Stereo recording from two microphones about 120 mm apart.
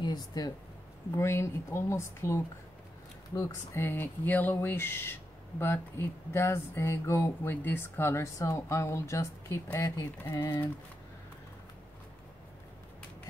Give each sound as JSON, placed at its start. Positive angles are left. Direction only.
{"t": 0.0, "sound": "speech", "side_deg": 35}
{"t": 1.1, "sound": "speech", "side_deg": 20}